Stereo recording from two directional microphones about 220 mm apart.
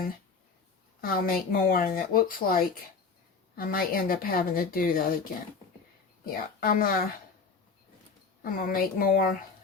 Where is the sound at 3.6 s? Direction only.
40° left (ahead or behind).